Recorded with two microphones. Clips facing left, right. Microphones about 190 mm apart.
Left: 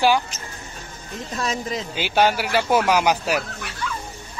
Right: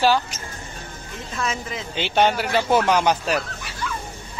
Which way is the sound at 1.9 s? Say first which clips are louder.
Even; 5° left (ahead or behind).